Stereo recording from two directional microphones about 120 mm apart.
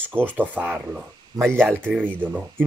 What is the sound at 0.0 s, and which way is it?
Speech, 15° right (ahead or behind).